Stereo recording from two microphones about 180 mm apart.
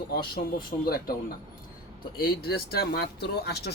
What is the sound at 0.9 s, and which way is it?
Speech, 55° left (ahead or behind).